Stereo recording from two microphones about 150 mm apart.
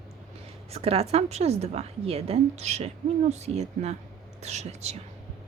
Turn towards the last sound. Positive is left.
turn(degrees=-45)  # may be behind; listen again after turning